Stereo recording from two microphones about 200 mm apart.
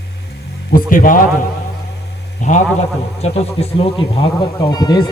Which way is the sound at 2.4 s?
35° left (ahead or behind).